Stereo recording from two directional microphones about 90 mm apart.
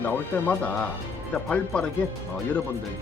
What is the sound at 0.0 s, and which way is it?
A man's voice, 20° left (ahead or behind).